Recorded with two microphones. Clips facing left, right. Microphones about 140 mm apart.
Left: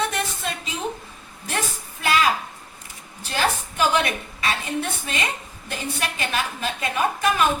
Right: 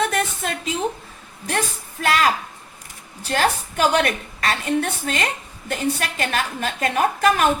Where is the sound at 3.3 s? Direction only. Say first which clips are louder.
Right 3 dB; 70° right (ahead or behind).